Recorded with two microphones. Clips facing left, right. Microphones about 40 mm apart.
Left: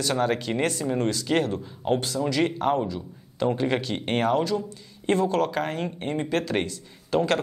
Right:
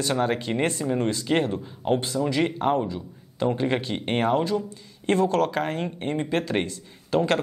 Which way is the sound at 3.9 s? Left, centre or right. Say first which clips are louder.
Even; centre.